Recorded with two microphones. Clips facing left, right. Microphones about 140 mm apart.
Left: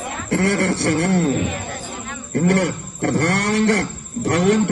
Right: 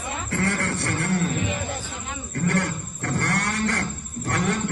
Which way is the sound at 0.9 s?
40° left (ahead or behind).